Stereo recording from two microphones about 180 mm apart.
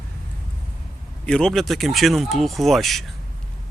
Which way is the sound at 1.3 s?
5° left (ahead or behind).